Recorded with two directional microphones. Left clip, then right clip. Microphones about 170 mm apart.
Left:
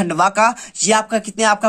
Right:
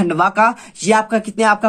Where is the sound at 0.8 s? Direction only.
20° left (ahead or behind).